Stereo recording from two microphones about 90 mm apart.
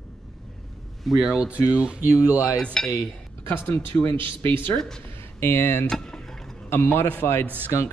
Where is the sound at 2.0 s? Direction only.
20° right (ahead or behind).